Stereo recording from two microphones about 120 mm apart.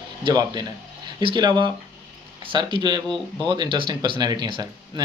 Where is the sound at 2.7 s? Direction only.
35° right (ahead or behind).